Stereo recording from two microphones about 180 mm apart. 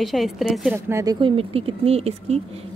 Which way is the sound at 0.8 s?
15° right (ahead or behind).